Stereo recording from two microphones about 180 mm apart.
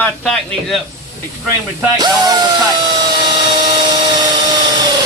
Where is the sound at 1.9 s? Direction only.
20° right (ahead or behind).